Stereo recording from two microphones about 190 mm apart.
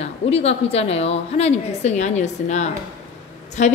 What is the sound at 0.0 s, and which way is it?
A woman's voice, 35° left (ahead or behind).